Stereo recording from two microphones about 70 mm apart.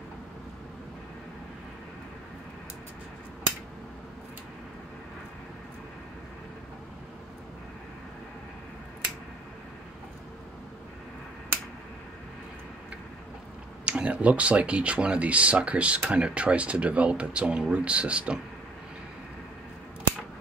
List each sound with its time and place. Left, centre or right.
13.8 s speech: centre